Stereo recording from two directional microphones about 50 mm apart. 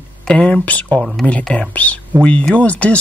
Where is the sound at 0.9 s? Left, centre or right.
Centre.